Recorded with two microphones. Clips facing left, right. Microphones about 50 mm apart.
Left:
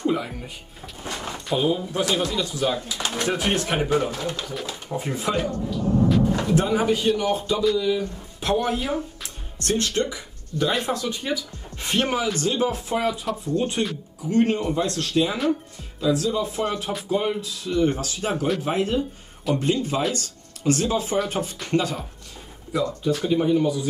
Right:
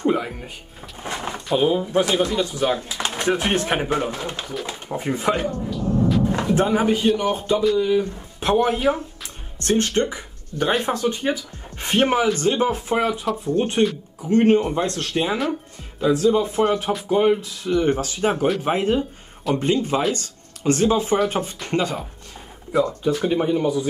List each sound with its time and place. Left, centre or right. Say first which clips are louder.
0.0 s speech: right 3 dB; right
0.9 s bird: right 3 dB; right
1.6 s speech: right 4 dB; right
2.0 s speech: right 3 dB; centre
2.3 s speech: right 3 dB; right
3.1 s pigeon: right 3 dB; centre
3.3 s speech: right 2 dB; right
5.7 s music: even; centre
6.5 s speech: right 3 dB; right